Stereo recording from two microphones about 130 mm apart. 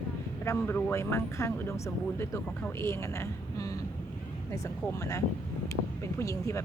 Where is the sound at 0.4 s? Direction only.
15° left (ahead or behind).